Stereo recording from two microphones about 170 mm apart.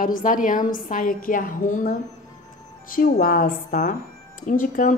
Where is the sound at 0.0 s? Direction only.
55° left (ahead or behind).